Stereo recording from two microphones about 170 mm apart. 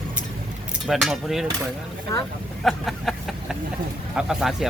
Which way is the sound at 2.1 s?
20° left (ahead or behind).